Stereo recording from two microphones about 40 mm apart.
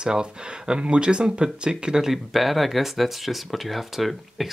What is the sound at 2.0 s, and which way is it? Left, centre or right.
Speech, centre.